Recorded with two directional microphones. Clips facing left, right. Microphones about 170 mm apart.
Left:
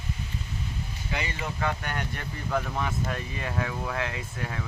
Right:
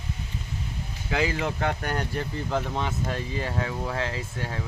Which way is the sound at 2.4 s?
25° right (ahead or behind).